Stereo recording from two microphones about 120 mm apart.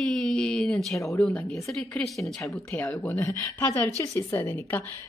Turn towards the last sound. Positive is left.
turn(degrees=15)  # may be behind; listen again after turning